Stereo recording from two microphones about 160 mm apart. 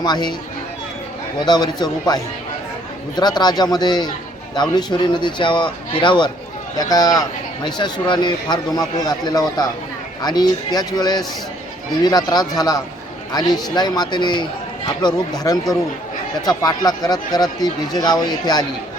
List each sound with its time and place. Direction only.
0.0 s speech: 25° left (ahead or behind)
1.4 s speech: 25° left (ahead or behind)